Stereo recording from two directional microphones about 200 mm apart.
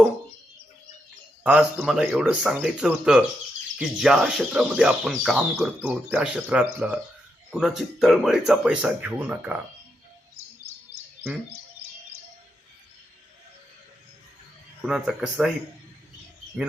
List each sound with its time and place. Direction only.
1.5 s speech: 5° right (ahead or behind)
14.8 s speech: 5° right (ahead or behind)